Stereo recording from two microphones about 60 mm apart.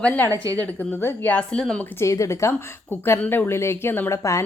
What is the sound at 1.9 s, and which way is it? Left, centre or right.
Speech, left.